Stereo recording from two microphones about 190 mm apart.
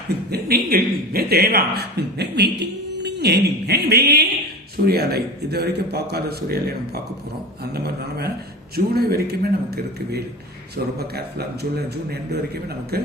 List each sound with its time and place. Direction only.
0.3 s speech: 55° right (ahead or behind)